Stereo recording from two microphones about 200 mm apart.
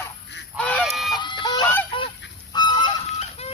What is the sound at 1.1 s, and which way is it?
Honk, 25° left (ahead or behind).